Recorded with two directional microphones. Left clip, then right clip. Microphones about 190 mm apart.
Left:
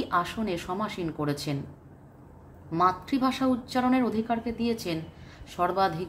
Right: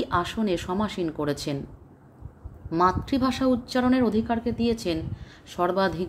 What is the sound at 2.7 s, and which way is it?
A woman's voice, 45° right (ahead or behind).